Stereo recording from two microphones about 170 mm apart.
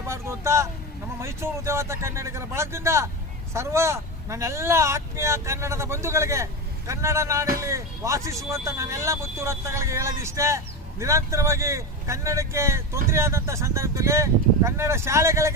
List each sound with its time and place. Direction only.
0.1 s speech: 15° right (ahead or behind)